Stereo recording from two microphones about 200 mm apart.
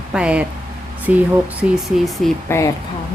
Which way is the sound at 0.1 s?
5° right (ahead or behind).